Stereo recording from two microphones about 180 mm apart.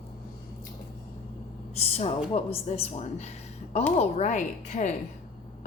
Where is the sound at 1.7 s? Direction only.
35° left (ahead or behind).